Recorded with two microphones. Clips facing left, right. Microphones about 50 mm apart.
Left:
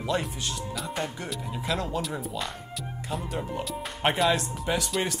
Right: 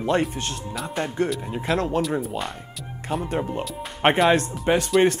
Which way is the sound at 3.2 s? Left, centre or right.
Right.